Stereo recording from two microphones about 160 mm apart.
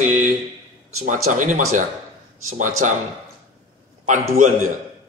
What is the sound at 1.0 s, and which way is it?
Speech, 50° right (ahead or behind).